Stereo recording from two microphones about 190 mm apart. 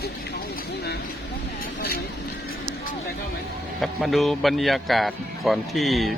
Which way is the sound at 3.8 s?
Centre (ahead or behind).